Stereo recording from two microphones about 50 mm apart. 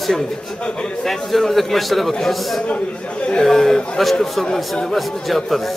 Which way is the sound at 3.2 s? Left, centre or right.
Left.